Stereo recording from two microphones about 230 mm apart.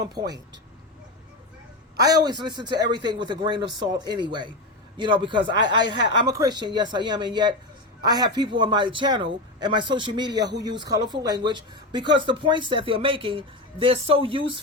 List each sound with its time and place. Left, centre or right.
0.2 s speech: centre
2.0 s speech: centre